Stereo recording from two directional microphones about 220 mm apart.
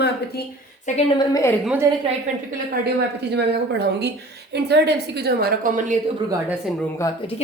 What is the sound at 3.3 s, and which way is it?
A woman's voice, 50° right (ahead or behind).